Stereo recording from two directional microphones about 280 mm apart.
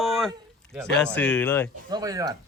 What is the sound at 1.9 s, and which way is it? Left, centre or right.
Speech, centre.